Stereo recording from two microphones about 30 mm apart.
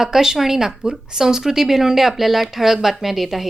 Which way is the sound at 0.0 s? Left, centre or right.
Centre.